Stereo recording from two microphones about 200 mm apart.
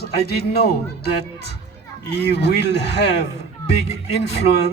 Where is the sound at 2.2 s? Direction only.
60° left (ahead or behind).